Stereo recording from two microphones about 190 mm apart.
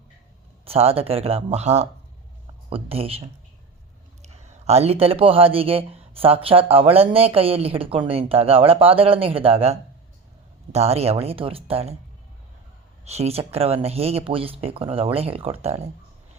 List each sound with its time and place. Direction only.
0.6 s speech: 30° right (ahead or behind)
13.1 s speech: 35° right (ahead or behind)